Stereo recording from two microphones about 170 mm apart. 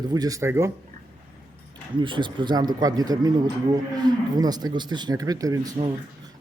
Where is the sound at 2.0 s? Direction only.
30° right (ahead or behind).